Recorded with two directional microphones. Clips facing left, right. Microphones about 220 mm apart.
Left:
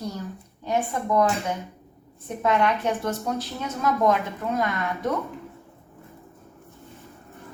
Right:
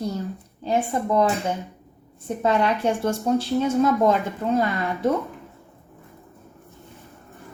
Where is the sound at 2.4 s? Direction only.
30° right (ahead or behind).